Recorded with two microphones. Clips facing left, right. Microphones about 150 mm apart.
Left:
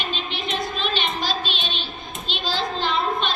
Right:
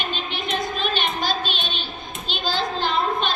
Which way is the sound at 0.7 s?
45° right (ahead or behind).